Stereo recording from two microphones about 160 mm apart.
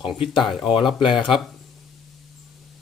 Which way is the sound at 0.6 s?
35° left (ahead or behind).